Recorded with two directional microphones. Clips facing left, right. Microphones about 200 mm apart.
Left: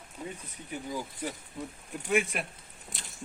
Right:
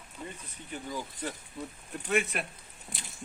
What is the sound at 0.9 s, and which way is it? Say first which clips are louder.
Speech: left 1 dB; 10° left (ahead or behind).